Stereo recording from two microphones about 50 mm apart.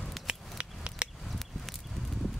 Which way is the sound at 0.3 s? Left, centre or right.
Right.